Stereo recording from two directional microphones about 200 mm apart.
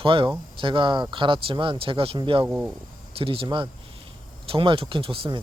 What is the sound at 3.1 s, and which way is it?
Speech, 30° right (ahead or behind).